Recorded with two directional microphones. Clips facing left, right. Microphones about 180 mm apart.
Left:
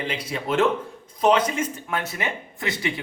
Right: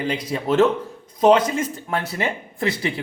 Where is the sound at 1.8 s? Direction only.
30° right (ahead or behind).